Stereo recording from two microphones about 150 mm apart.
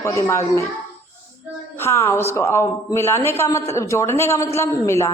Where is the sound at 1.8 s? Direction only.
15° left (ahead or behind).